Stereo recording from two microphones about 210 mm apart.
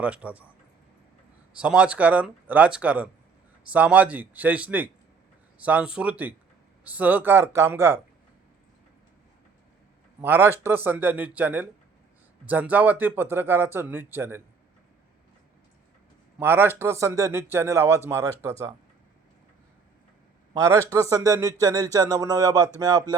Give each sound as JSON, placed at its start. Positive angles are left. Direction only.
{"t": 0.0, "sound": "speech", "side_deg": -5}
{"t": 1.5, "sound": "speech", "side_deg": -5}
{"t": 10.2, "sound": "speech", "side_deg": -10}
{"t": 16.4, "sound": "speech", "side_deg": -10}
{"t": 20.5, "sound": "speech", "side_deg": -15}